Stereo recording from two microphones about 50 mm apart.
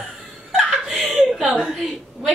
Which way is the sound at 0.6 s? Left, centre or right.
Centre.